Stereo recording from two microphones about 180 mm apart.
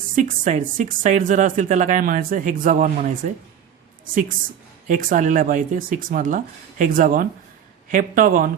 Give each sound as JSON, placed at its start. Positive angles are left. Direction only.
{"t": 0.2, "sound": "speech", "side_deg": -45}
{"t": 4.1, "sound": "speech", "side_deg": -50}